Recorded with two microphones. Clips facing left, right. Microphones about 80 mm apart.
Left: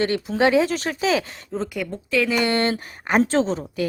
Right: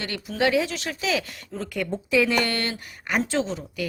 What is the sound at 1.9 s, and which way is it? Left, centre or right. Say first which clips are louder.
Speech: right 2 dB; centre.